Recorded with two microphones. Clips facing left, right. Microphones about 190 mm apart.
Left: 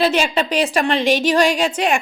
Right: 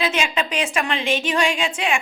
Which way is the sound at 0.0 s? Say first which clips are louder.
Left 5 dB; 35° left (ahead or behind).